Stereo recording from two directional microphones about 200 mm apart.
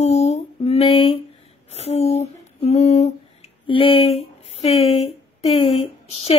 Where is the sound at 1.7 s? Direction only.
30° left (ahead or behind).